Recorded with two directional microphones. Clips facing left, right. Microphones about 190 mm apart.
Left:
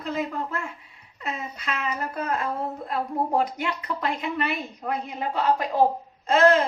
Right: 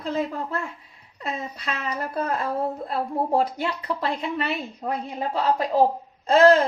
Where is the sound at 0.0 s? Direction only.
30° right (ahead or behind).